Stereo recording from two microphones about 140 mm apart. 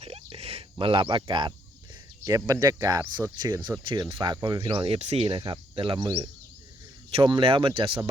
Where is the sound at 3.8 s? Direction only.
35° right (ahead or behind).